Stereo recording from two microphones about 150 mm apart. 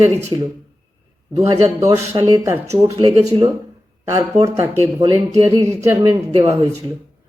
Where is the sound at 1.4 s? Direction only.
20° right (ahead or behind).